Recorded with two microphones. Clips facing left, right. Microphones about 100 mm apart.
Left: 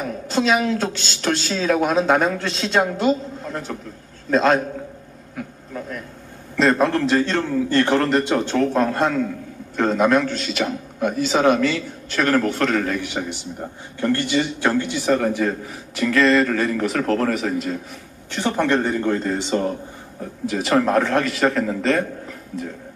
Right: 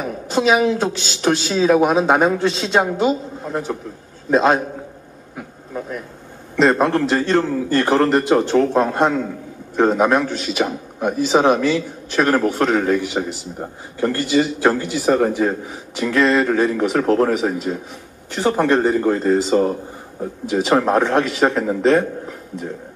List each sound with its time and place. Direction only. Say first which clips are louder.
0.0 s a man's voice: right 3 dB; 10° right (ahead or behind)
5.3 s a sound: right 2 dB; 20° right (ahead or behind)
6.5 s a man's voice: right 2 dB; 15° right (ahead or behind)
15.2 s a man's voice: right 2 dB; 15° right (ahead or behind)
20.2 s a man's voice: right 4 dB; 20° right (ahead or behind)